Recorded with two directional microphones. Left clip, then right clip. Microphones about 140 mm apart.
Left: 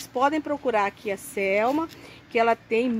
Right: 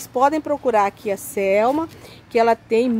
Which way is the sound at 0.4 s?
5° right (ahead or behind).